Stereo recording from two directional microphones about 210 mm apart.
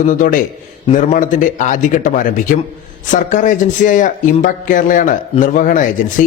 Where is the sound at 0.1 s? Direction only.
40° left (ahead or behind).